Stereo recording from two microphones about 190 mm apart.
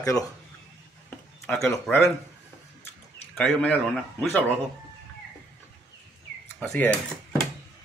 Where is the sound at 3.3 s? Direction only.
5° left (ahead or behind).